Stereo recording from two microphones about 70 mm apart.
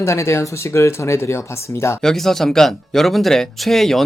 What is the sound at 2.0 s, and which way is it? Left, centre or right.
Speech, centre.